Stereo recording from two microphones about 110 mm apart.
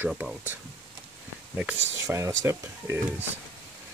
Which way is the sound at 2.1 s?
30° right (ahead or behind).